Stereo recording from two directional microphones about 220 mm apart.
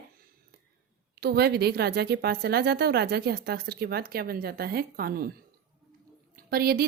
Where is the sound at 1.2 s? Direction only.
45° right (ahead or behind).